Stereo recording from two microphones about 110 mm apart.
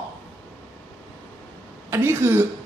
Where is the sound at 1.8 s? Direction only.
25° right (ahead or behind).